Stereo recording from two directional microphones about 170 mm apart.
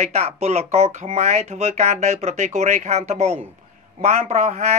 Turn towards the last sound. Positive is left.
turn(degrees=-40)  # may be behind; listen again after turning